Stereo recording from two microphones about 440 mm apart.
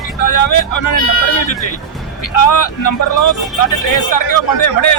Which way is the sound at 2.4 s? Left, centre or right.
Left.